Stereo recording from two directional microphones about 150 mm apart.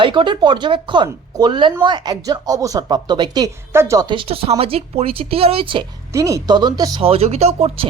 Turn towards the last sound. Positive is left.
turn(degrees=-45)  # may be behind; listen again after turning